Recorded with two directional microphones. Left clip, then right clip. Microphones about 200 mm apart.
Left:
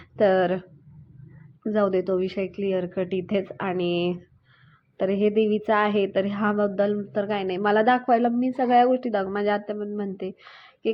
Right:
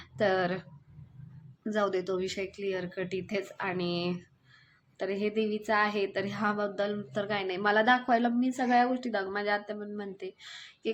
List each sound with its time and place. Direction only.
0.0 s a woman's voice: 20° left (ahead or behind)
1.6 s a woman's voice: 15° left (ahead or behind)